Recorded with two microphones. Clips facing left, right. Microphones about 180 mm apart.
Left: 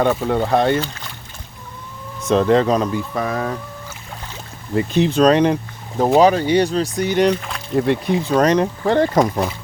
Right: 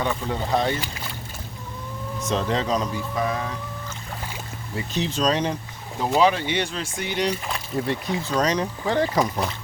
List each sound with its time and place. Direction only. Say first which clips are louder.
0.0 s speech: left 9 dB; 65° left (ahead or behind)
2.2 s speech: left 10 dB; 55° left (ahead or behind)
4.9 s speech: left 9 dB; 60° left (ahead or behind)
6.0 s speech: left 7 dB; 45° left (ahead or behind)
7.8 s speech: left 9 dB; 60° left (ahead or behind)